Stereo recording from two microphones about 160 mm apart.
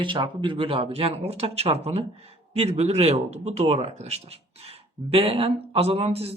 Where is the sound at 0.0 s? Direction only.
30° right (ahead or behind).